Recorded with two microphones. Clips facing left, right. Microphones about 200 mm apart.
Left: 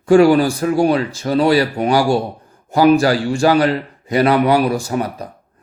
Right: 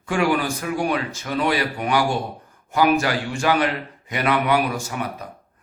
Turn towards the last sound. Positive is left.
turn(degrees=35)  # may be behind; listen again after turning